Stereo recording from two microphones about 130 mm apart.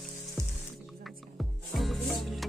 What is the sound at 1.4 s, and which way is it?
Music, centre (ahead or behind).